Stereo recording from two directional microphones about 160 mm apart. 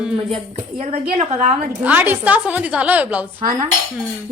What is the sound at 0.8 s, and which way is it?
Speech, 45° right (ahead or behind).